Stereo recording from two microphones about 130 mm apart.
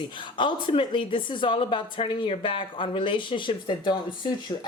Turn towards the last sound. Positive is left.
turn(degrees=35)  # may be behind; listen again after turning